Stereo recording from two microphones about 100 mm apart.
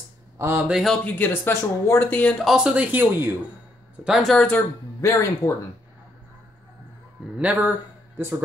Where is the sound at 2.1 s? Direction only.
10° left (ahead or behind).